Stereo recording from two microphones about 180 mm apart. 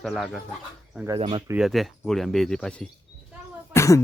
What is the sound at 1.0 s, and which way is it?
Speech, 25° right (ahead or behind).